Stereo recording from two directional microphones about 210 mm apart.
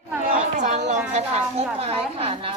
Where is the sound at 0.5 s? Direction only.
35° right (ahead or behind).